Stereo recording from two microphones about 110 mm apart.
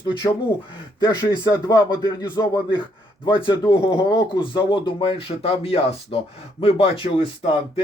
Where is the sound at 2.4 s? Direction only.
40° left (ahead or behind); by 7.2 s 60° left (ahead or behind).